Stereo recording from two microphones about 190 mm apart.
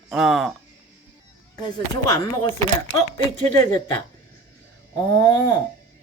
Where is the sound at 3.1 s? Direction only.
20° left (ahead or behind).